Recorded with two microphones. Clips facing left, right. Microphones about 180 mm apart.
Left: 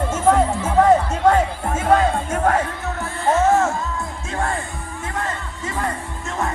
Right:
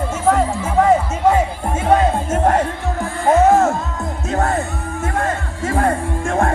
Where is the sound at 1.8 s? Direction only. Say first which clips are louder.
Right 2 dB; 20° right (ahead or behind).